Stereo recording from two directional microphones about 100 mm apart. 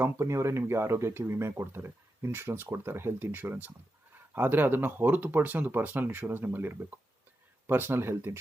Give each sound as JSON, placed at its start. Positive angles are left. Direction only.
{"t": 0.0, "sound": "speech", "side_deg": -30}